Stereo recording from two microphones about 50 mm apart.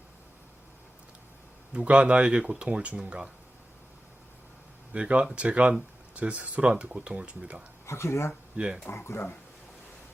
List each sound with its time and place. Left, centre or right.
1.7 s speech: right
4.9 s speech: right
7.9 s speech: left
8.6 s speech: right
8.9 s speech: left